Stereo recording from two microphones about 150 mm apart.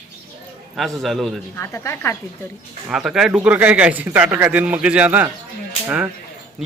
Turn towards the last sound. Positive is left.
turn(degrees=-10)  # may be behind; listen again after turning